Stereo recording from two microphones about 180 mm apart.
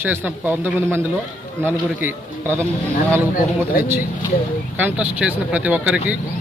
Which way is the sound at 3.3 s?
55° left (ahead or behind).